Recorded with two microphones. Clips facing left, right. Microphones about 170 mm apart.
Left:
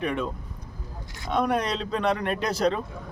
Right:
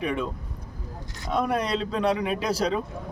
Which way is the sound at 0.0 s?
5° right (ahead or behind).